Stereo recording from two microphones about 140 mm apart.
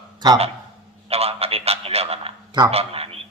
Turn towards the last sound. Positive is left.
turn(degrees=-45)  # may be behind; listen again after turning